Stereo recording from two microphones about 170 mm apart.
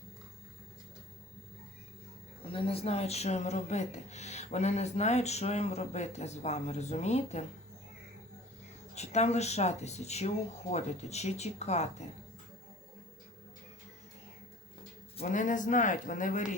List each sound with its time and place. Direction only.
2.4 s speech: 30° left (ahead or behind)
9.0 s speech: 40° left (ahead or behind)
15.2 s speech: 50° left (ahead or behind)